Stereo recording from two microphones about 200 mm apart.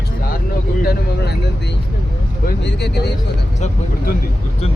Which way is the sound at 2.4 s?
60° left (ahead or behind).